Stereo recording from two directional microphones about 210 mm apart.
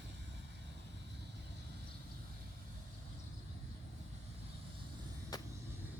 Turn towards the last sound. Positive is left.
turn(degrees=20)  # may be behind; listen again after turning